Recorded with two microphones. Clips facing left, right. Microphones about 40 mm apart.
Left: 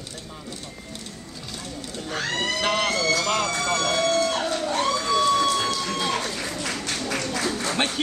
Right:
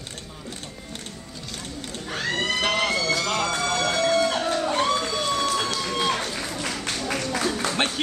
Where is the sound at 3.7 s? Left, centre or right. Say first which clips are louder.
Left 1 dB; centre.